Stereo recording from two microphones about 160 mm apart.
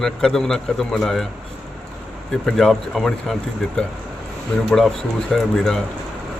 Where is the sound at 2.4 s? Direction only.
Centre (ahead or behind).